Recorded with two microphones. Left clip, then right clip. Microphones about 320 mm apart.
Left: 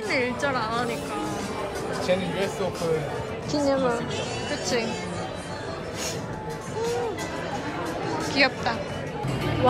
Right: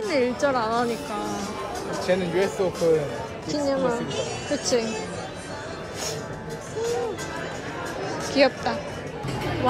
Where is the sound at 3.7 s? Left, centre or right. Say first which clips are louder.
Even; centre.